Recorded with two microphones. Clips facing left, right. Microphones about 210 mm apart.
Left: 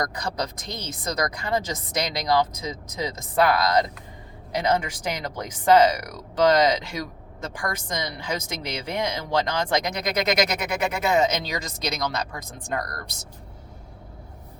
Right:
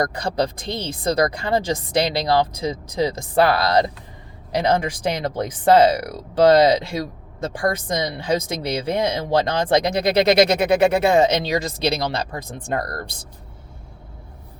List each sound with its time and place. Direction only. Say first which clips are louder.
0.0 s speech: right 7 dB; 30° right (ahead or behind)